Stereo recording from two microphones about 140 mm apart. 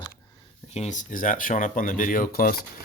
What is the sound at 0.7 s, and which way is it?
Speech, 55° left (ahead or behind).